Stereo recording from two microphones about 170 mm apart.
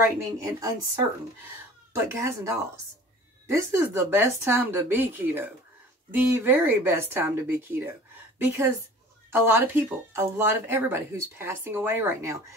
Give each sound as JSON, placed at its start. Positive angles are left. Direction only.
{"t": 0.4, "sound": "speech", "side_deg": -15}
{"t": 2.0, "sound": "speech", "side_deg": -15}